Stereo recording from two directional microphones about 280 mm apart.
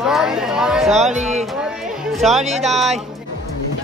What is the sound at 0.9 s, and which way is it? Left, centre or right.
Speech, right.